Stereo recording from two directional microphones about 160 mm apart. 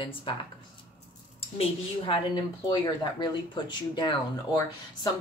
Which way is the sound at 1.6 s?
30° left (ahead or behind).